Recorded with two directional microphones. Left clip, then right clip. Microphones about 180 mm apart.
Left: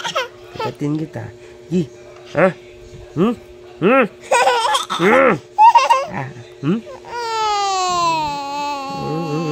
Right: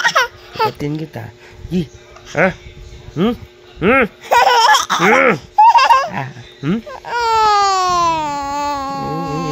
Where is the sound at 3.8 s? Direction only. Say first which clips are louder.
Right 1 dB; 5° left (ahead or behind).